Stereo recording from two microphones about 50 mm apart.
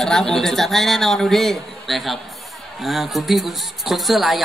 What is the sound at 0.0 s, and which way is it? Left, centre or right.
A man's voice, centre.